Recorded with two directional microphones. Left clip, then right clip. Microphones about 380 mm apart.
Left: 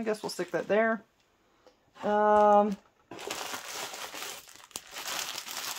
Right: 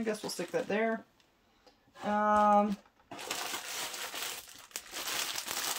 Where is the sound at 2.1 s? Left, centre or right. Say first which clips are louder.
Left 4 dB; centre.